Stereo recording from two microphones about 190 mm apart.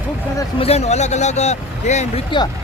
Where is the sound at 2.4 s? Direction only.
25° left (ahead or behind).